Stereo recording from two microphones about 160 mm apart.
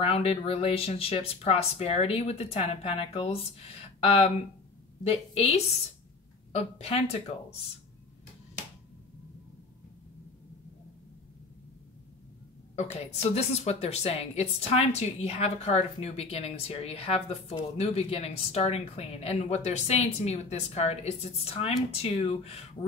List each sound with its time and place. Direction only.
0.0 s a woman's voice: 40° left (ahead or behind)
13.0 s a woman's voice: 40° left (ahead or behind)